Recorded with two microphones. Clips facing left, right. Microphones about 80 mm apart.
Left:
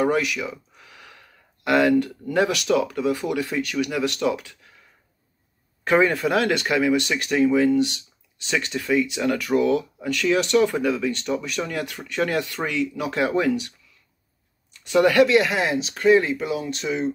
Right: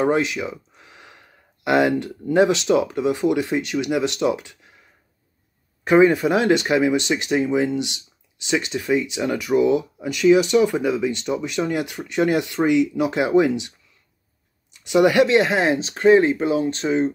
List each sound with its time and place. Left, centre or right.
0.0 s speech: right
5.9 s speech: centre; by 17.1 s right